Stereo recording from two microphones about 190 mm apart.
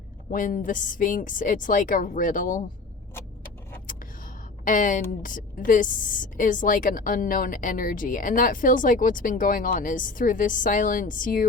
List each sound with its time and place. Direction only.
0.3 s a woman's voice: 45° left (ahead or behind)
4.6 s a woman's voice: 45° left (ahead or behind)